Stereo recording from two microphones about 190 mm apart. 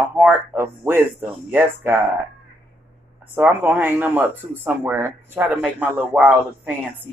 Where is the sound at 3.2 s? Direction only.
10° right (ahead or behind).